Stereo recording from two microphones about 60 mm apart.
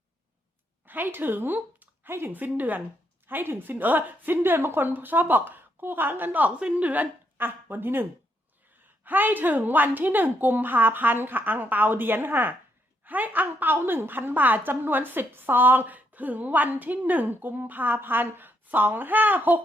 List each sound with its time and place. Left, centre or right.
0.9 s a woman's voice: right
9.0 s a woman's voice: right